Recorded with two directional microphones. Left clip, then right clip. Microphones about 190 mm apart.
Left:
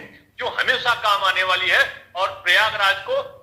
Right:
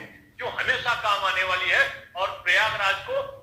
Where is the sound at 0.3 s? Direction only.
25° left (ahead or behind).